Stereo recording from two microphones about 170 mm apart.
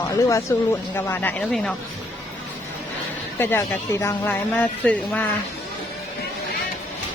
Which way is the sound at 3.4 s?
15° left (ahead or behind).